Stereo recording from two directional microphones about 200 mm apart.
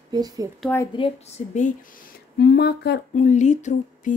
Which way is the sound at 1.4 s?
30° left (ahead or behind).